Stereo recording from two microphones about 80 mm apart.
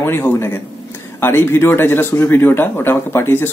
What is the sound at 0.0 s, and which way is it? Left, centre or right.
Speech, left.